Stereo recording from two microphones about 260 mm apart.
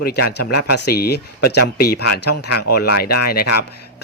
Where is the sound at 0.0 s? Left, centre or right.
Left.